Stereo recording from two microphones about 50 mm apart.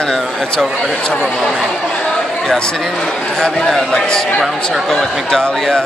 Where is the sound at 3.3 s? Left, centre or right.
Centre.